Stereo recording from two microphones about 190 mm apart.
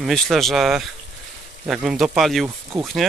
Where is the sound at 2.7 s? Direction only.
20° right (ahead or behind).